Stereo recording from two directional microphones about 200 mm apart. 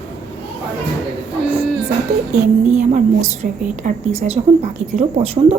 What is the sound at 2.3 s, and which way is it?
A woman's voice, 35° right (ahead or behind).